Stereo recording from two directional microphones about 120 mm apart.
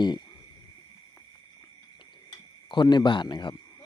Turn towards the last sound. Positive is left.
turn(degrees=40)  # may be behind; listen again after turning